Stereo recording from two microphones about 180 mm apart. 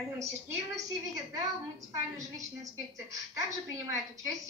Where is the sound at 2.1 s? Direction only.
20° right (ahead or behind).